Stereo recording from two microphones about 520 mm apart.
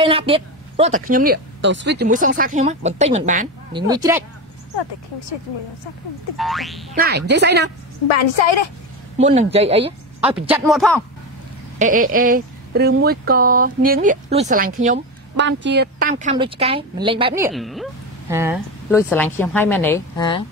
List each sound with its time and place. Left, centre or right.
0.0 s a woman's voice: centre
6.3 s a woman's voice: centre
7.0 s a woman's voice: centre
8.1 s a woman's voice: left
9.2 s a woman's voice: centre
11.8 s a woman's voice: centre